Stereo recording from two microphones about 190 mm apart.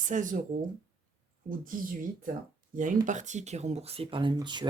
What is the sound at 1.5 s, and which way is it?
Speech, 45° right (ahead or behind).